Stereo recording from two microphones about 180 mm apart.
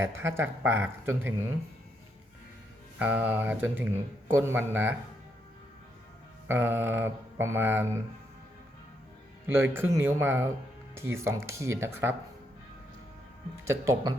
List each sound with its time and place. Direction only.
0.0 s mantra: 15° right (ahead or behind)
3.0 s mantra: 10° right (ahead or behind)
6.5 s mantra: 10° right (ahead or behind)
9.5 s mantra: 10° right (ahead or behind)
13.7 s mantra: 15° right (ahead or behind)